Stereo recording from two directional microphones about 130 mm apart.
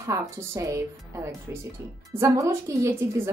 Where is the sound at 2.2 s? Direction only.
20° right (ahead or behind).